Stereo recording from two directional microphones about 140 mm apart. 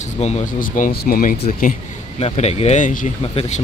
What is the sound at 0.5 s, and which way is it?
Speech, 75° left (ahead or behind).